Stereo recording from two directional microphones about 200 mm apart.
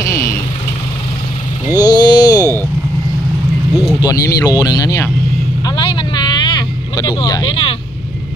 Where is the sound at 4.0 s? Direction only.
20° left (ahead or behind).